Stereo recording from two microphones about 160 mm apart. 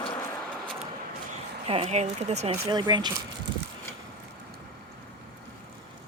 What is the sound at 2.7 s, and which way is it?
Speech, 25° right (ahead or behind).